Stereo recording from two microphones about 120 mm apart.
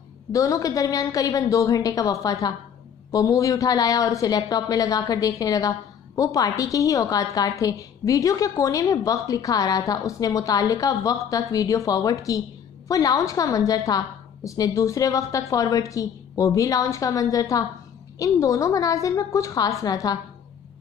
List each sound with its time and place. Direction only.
0.3 s speech: 30° left (ahead or behind)